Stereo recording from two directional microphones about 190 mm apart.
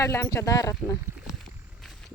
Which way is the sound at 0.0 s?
15° left (ahead or behind).